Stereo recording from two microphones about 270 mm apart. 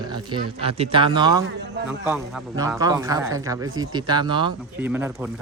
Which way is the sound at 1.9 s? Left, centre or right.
Centre.